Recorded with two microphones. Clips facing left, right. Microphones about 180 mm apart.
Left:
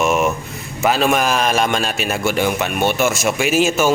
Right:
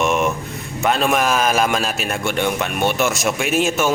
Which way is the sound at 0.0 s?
5° left (ahead or behind).